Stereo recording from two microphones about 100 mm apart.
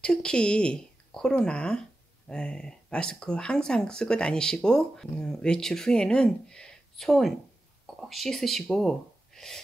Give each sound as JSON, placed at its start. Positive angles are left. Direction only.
{"t": 0.0, "sound": "speech", "side_deg": 10}